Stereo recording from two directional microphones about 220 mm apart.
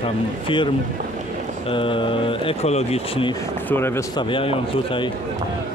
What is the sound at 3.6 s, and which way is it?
Speech, 10° left (ahead or behind).